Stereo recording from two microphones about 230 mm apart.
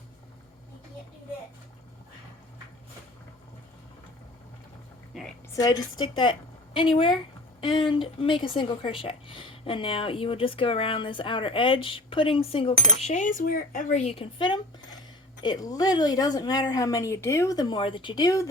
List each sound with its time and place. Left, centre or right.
5.5 s a woman's voice: centre